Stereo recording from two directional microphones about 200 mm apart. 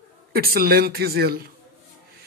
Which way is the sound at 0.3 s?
50° right (ahead or behind).